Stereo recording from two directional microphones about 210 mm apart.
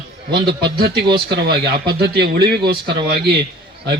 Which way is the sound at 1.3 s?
50° right (ahead or behind).